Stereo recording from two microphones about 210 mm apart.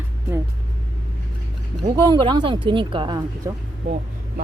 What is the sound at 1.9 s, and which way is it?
Speech, 20° right (ahead or behind).